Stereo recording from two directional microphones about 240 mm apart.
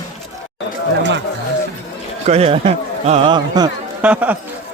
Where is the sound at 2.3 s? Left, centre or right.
Right; by 4.4 s centre.